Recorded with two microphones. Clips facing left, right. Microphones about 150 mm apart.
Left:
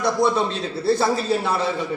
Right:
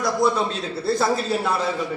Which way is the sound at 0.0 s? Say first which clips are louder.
Left 1 dB; centre (ahead or behind).